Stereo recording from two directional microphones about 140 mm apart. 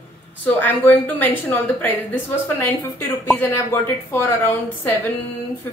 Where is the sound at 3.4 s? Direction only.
15° left (ahead or behind).